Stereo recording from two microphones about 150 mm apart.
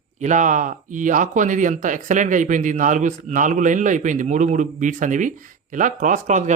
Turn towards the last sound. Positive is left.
turn(degrees=-55)  # may be behind; listen again after turning